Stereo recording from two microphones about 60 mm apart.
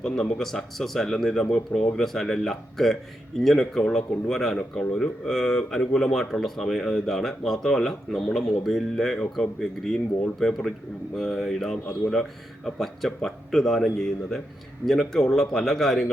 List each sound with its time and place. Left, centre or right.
0.0 s speech: centre